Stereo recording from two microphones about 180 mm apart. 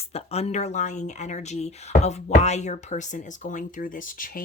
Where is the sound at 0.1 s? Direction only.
35° left (ahead or behind).